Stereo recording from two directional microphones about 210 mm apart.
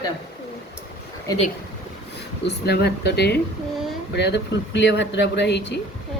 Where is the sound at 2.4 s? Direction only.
50° left (ahead or behind).